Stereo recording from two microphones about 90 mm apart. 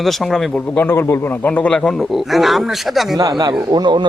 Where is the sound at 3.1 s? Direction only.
50° right (ahead or behind).